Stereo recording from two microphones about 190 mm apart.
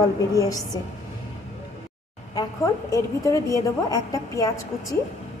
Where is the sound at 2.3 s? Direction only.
15° left (ahead or behind).